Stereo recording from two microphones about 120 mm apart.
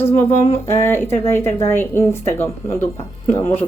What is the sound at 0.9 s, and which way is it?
Speech, 20° left (ahead or behind).